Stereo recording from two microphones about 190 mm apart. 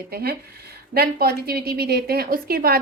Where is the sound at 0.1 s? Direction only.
55° right (ahead or behind).